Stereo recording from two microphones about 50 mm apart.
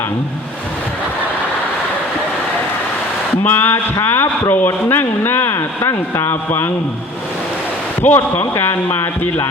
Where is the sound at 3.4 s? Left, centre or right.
Left.